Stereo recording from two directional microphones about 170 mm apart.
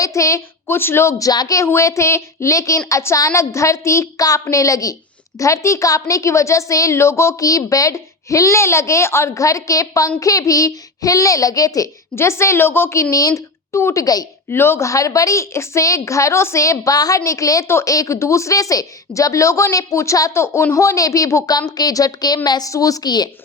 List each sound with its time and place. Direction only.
0.0 s a woman's voice: 20° left (ahead or behind)